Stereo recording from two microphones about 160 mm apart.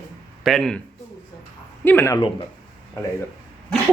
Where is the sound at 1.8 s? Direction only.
15° left (ahead or behind).